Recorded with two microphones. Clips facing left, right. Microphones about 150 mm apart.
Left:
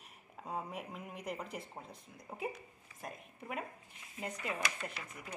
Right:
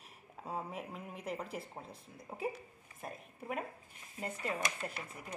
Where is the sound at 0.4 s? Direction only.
Centre (ahead or behind).